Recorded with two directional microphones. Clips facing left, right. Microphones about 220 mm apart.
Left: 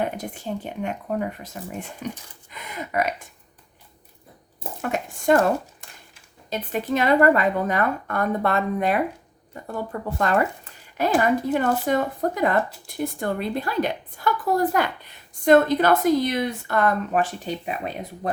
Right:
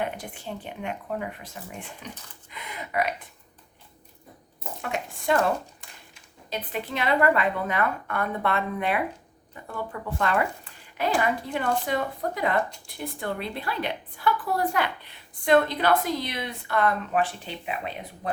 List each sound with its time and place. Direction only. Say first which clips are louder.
0.0 s a woman's voice: left 4 dB; 40° left (ahead or behind)
4.8 s a woman's voice: left 5 dB; 45° left (ahead or behind)
6.5 s a woman's voice: left 7 dB; 45° left (ahead or behind)